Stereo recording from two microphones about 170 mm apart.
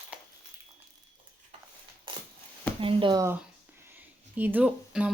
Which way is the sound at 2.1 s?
30° right (ahead or behind).